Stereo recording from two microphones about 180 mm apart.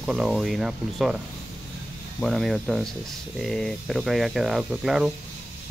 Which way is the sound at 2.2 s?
Centre (ahead or behind).